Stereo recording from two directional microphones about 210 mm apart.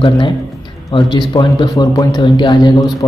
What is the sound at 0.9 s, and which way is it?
A man's voice, 25° left (ahead or behind).